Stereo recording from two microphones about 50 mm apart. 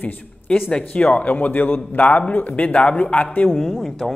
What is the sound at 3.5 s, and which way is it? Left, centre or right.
Speech, centre.